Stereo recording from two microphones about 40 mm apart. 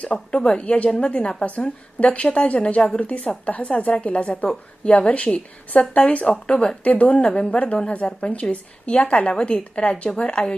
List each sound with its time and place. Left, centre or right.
0.0 s a woman's voice: left
0.6 s a woman's voice: left